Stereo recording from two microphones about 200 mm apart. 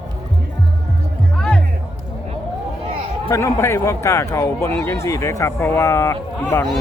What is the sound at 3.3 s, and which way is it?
Speech, 15° left (ahead or behind).